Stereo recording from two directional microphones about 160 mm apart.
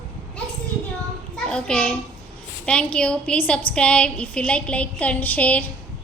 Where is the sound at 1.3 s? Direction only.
5° left (ahead or behind).